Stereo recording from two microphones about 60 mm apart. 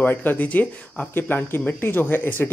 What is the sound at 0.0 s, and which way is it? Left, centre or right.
Speech, left.